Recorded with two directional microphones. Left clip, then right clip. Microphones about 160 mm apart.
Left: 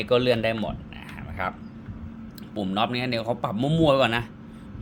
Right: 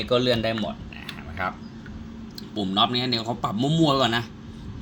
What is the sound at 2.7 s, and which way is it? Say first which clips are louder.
Speech: right 3 dB; 5° left (ahead or behind).